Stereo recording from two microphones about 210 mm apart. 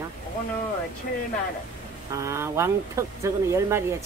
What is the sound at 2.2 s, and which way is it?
Speech, 15° right (ahead or behind).